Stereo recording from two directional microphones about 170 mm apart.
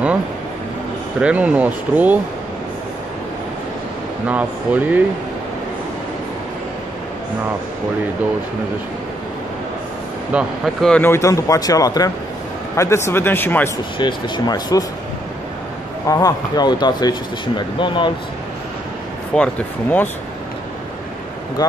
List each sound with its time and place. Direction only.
1.2 s speech: 10° right (ahead or behind)
4.3 s speech: 10° right (ahead or behind)
10.3 s speech: centre (ahead or behind)
11.1 s speech: 20° left (ahead or behind)
13.9 s speech: 25° left (ahead or behind)
16.1 s speech: 20° left (ahead or behind)
19.3 s speech: 10° left (ahead or behind)